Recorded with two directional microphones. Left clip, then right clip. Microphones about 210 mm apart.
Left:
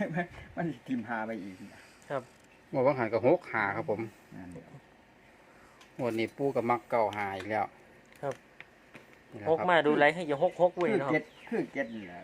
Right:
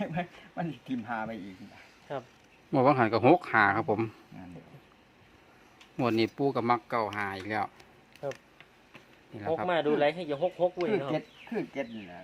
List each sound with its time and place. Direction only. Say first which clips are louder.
0.0 s speech: left 1 dB; 35° right (ahead or behind)
2.1 s speech: left 2 dB; 15° left (ahead or behind)
2.7 s speech: right 3 dB; 50° right (ahead or behind)
6.0 s speech: right 4 dB; 50° right (ahead or behind)
6.5 s speech: right 1 dB; 35° right (ahead or behind)
8.2 s speech: left 1 dB; 15° left (ahead or behind)
9.6 s speech: left 2 dB; 15° left (ahead or behind)
11.1 s speech: left 2 dB; 30° right (ahead or behind)